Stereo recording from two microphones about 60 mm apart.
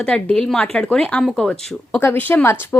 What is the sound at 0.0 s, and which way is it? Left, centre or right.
Speech, centre.